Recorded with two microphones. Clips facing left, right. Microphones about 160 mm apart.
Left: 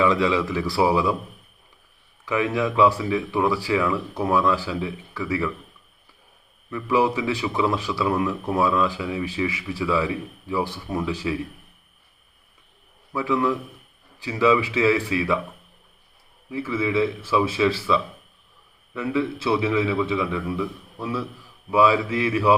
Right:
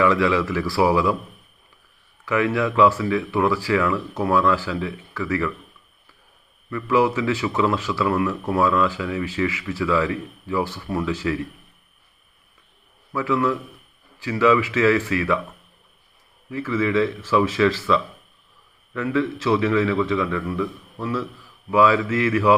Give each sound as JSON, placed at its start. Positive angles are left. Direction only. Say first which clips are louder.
{"t": 0.0, "sound": "speech", "louder": "right 1 dB", "side_deg": 15}
{"t": 2.2, "sound": "speech", "louder": "right 2 dB", "side_deg": 15}
{"t": 6.7, "sound": "speech", "louder": "right 2 dB", "side_deg": 15}
{"t": 13.1, "sound": "speech", "louder": "right 1 dB", "side_deg": 15}
{"t": 16.5, "sound": "speech", "louder": "right 2 dB", "side_deg": 10}